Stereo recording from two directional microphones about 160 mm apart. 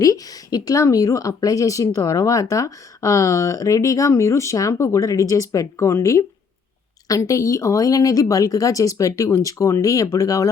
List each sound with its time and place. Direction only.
0.0 s speech: 20° left (ahead or behind)